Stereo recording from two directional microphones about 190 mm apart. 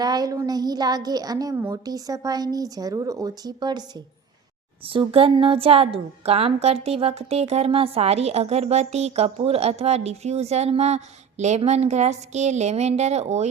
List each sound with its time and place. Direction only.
0.0 s a woman's voice: 20° right (ahead or behind); by 13.5 s 35° right (ahead or behind)